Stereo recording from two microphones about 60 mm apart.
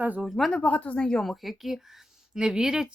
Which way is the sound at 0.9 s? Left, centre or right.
Centre.